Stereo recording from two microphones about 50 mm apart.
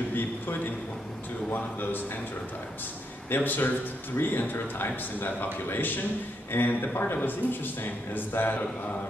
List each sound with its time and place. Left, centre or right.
0.1 s a man's voice: left
3.3 s speech: left